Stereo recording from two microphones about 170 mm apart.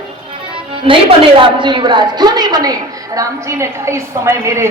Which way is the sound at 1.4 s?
30° right (ahead or behind).